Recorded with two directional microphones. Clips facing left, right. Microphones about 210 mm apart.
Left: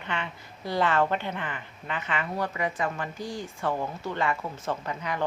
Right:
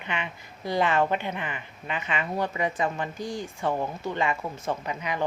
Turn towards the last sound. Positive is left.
turn(degrees=-15)  # may be behind; listen again after turning